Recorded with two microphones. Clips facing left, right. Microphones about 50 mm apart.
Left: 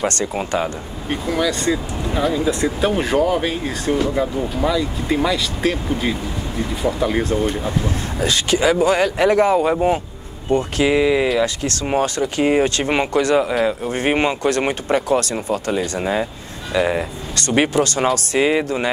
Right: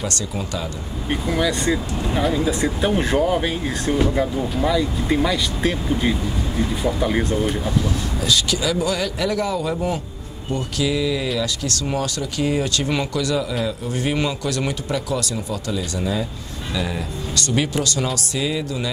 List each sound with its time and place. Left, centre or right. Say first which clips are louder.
0.0 s speech: left 5 dB; left
1.1 s speech: left 1 dB; centre
7.6 s speech: even; left